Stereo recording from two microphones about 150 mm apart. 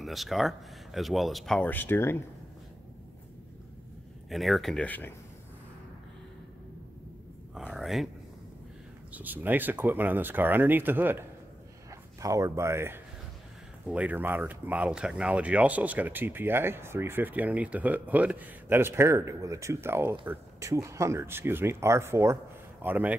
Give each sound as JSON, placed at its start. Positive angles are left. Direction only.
{"t": 0.0, "sound": "speech", "side_deg": 0}
{"t": 1.7, "sound": "speech", "side_deg": 15}
{"t": 4.3, "sound": "speech", "side_deg": 0}
{"t": 7.5, "sound": "speech", "side_deg": -5}
{"t": 9.1, "sound": "speech", "side_deg": -10}